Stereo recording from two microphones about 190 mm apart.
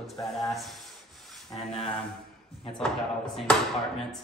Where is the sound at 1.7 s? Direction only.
30° left (ahead or behind).